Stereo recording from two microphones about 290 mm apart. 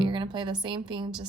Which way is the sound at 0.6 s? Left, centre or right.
Centre.